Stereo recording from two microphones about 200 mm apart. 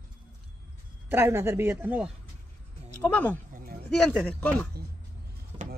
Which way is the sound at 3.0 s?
5° left (ahead or behind).